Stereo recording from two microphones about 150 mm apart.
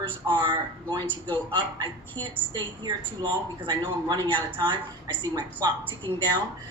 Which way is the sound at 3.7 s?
30° right (ahead or behind).